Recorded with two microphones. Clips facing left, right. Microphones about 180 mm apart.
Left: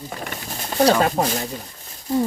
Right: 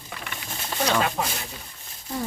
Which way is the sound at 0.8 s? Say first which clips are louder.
Left 8 dB; 40° left (ahead or behind).